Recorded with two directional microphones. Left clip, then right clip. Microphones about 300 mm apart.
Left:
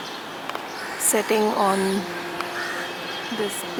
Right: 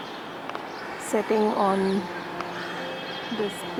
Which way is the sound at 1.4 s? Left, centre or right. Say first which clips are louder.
Left 2 dB; centre.